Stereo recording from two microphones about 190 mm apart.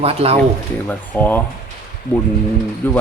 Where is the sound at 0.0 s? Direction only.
30° right (ahead or behind).